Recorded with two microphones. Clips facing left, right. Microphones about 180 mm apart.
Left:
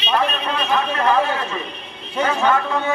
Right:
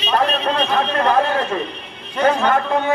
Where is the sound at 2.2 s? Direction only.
55° right (ahead or behind).